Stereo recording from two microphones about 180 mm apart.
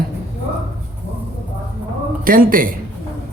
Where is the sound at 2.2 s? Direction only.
50° right (ahead or behind).